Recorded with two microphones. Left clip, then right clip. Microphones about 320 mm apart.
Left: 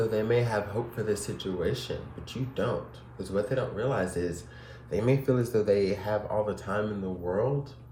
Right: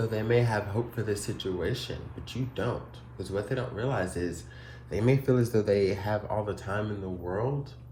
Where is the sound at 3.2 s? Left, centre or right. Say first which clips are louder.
Left 3 dB; centre.